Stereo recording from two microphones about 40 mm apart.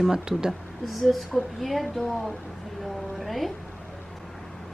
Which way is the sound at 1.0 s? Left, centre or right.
Centre.